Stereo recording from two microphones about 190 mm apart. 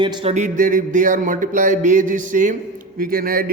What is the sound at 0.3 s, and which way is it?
A man's voice, 40° right (ahead or behind).